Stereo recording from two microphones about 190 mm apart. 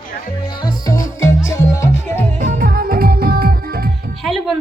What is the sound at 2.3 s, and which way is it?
Music, 45° right (ahead or behind).